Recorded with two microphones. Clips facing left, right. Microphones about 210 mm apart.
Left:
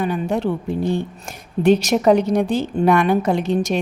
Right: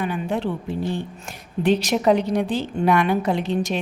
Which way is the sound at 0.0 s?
45° left (ahead or behind).